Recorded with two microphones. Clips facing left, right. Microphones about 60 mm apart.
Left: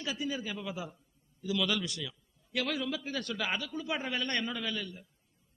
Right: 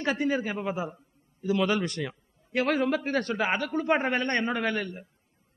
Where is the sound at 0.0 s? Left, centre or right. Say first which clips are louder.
Right 9 dB; right.